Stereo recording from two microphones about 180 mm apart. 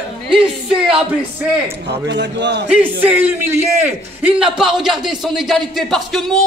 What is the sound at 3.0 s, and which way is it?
A man's voice, 10° right (ahead or behind).